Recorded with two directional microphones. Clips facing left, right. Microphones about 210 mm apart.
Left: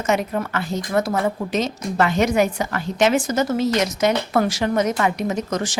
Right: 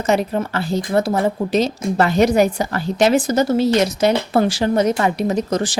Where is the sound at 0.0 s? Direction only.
30° right (ahead or behind).